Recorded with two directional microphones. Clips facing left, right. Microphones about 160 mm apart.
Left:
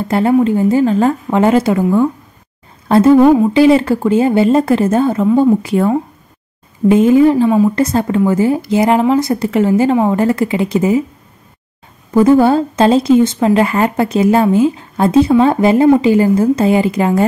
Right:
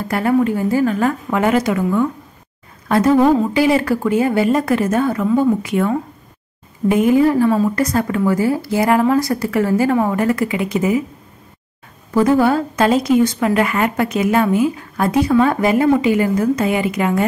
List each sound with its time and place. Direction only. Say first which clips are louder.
0.0 s a woman's voice: left 4 dB; 25° left (ahead or behind)
3.3 s speech: left 5 dB; 15° left (ahead or behind)
3.5 s a woman's voice: left 6 dB; 25° left (ahead or behind)
12.1 s a woman's voice: left 5 dB; 25° left (ahead or behind)